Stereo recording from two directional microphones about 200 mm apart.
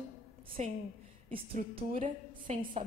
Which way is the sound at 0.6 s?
35° right (ahead or behind).